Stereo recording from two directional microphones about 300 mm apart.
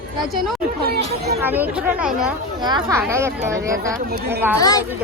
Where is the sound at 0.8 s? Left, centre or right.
Right.